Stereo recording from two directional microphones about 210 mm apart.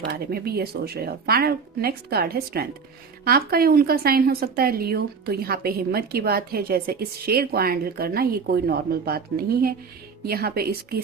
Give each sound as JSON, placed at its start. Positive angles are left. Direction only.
{"t": 0.1, "sound": "a woman's voice", "side_deg": -45}